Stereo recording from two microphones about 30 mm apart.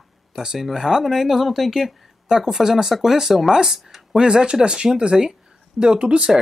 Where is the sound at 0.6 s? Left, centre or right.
Centre.